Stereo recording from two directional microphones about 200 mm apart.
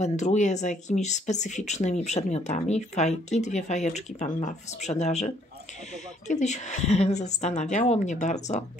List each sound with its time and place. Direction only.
0.0 s speech: 35° left (ahead or behind)